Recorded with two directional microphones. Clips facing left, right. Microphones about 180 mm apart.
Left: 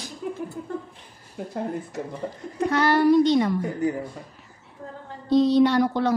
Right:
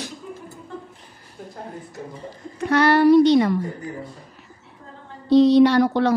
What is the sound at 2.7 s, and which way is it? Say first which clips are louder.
Speech: right 4 dB; 70° right (ahead or behind).